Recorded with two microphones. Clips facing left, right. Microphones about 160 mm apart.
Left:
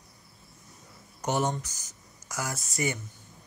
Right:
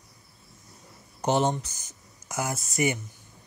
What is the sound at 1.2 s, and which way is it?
Speech, 30° right (ahead or behind).